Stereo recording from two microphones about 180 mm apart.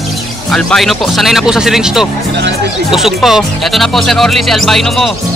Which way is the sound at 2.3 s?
75° right (ahead or behind).